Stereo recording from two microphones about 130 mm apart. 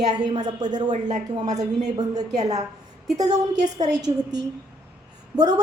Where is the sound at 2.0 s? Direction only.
30° right (ahead or behind).